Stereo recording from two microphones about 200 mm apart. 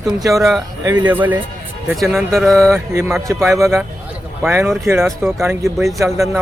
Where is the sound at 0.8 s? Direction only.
10° right (ahead or behind).